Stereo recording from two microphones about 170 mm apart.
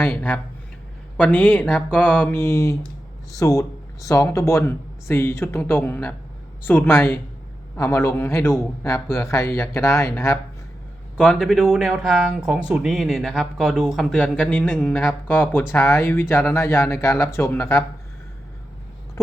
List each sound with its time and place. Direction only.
0.0 s speech: 10° left (ahead or behind)
11.2 s speech: 5° left (ahead or behind)